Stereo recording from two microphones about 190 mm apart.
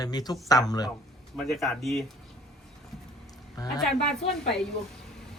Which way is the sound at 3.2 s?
20° left (ahead or behind).